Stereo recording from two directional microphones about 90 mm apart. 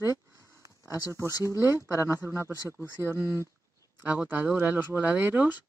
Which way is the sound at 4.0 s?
20° right (ahead or behind).